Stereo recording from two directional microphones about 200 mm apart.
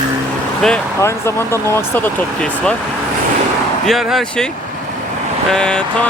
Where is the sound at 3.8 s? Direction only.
Centre (ahead or behind).